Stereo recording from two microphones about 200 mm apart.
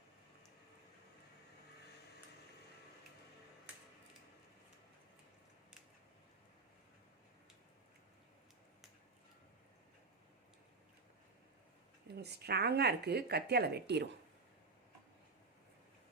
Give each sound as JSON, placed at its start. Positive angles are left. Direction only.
{"t": 12.0, "sound": "speech", "side_deg": -55}